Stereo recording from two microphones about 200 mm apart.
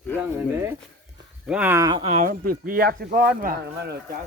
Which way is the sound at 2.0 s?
40° right (ahead or behind).